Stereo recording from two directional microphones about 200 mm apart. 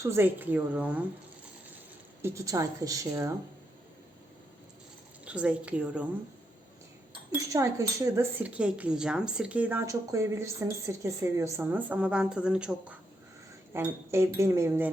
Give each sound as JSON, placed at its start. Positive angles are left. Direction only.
{"t": 0.0, "sound": "speech", "side_deg": -10}
{"t": 2.2, "sound": "speech", "side_deg": -15}
{"t": 5.2, "sound": "a woman's voice", "side_deg": -5}
{"t": 7.1, "sound": "speech", "side_deg": -20}